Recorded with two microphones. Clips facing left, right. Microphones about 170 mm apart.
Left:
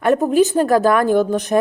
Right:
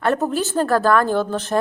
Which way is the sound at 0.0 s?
15° left (ahead or behind).